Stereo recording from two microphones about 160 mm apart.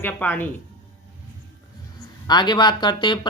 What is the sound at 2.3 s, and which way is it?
Speech, 25° left (ahead or behind).